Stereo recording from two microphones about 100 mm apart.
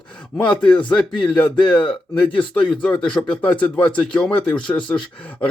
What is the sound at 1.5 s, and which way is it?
Speech, 50° left (ahead or behind).